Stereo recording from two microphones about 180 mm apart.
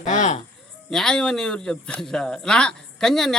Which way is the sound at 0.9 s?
5° left (ahead or behind).